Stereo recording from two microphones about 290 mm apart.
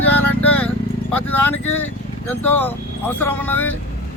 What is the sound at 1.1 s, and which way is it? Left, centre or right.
Speech, left.